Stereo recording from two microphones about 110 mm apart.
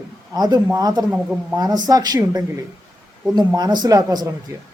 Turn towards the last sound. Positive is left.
turn(degrees=-35)  # may be behind; listen again after turning